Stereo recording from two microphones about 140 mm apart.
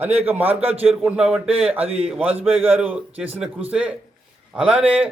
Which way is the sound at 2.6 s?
10° right (ahead or behind).